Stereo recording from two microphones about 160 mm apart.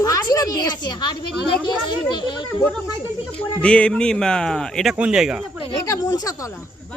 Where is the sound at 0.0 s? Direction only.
20° left (ahead or behind).